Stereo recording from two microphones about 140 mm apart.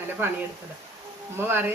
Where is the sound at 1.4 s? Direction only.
15° right (ahead or behind).